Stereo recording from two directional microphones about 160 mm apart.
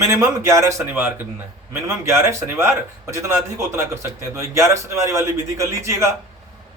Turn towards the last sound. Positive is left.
turn(degrees=-20)  # may be behind; listen again after turning